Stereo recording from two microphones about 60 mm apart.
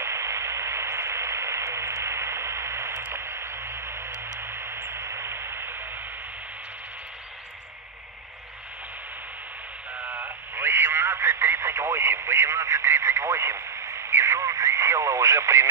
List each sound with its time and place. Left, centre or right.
0.0 s radio: right
10.0 s radio: right